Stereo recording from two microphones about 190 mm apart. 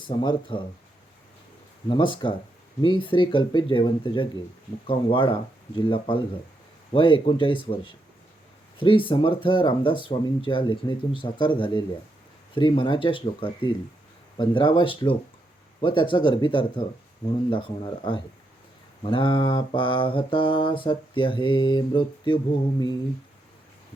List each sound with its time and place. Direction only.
0.1 s mantra: 25° left (ahead or behind)
1.9 s mantra: 25° left (ahead or behind)